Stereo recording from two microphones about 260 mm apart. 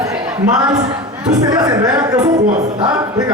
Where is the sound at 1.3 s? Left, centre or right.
Centre.